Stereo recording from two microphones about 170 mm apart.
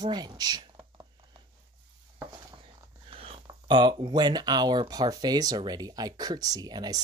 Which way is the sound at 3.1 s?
35° right (ahead or behind).